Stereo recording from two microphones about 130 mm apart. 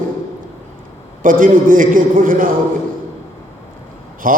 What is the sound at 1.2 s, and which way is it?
A man's voice, 90° right.